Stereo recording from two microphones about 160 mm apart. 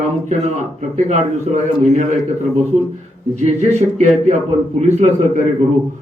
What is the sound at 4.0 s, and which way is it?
A man's voice, 40° right (ahead or behind).